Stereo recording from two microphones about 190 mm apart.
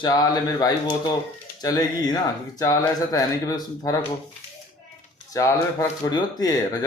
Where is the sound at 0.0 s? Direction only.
20° left (ahead or behind).